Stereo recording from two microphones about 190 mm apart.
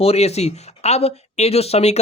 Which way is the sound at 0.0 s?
35° left (ahead or behind).